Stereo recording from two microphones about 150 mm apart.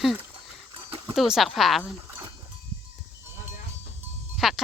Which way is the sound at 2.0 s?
20° right (ahead or behind).